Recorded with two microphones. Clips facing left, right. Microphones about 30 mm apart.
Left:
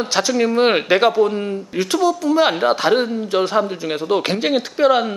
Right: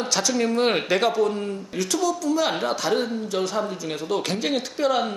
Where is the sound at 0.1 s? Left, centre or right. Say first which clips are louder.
Left 5 dB; left.